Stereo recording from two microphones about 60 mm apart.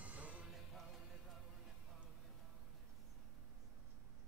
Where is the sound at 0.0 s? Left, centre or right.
Right.